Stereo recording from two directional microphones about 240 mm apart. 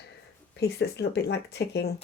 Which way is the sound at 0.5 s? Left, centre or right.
Left.